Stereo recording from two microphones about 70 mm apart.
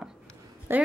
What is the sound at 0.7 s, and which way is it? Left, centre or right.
Speech, right.